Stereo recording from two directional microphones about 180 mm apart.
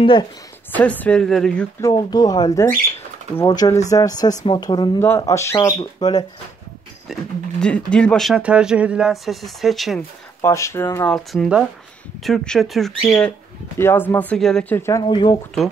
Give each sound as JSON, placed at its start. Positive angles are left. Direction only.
{"t": 0.0, "sound": "speech", "side_deg": 25}
{"t": 0.7, "sound": "speech", "side_deg": 10}
{"t": 1.8, "sound": "speech", "side_deg": 20}
{"t": 7.1, "sound": "speech", "side_deg": 0}
{"t": 10.4, "sound": "speech", "side_deg": 15}
{"t": 13.7, "sound": "speech", "side_deg": 10}